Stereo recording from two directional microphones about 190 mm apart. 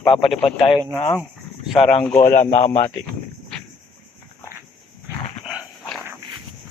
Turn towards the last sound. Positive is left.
turn(degrees=0)  # may be behind; listen again after turning